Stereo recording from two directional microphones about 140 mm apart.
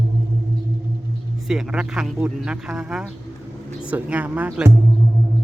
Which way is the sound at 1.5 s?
5° right (ahead or behind).